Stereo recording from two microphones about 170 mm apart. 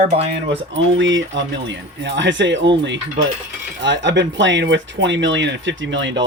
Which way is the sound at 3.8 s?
90° right.